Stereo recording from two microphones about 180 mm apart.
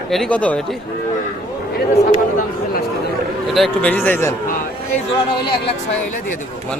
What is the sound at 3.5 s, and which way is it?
Speech, 5° left (ahead or behind).